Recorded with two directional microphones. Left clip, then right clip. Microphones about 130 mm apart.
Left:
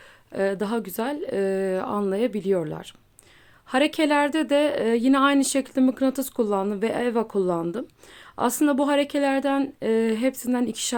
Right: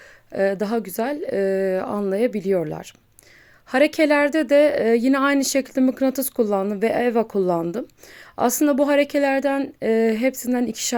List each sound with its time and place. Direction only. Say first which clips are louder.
0.3 s speech: right 4 dB; 25° right (ahead or behind)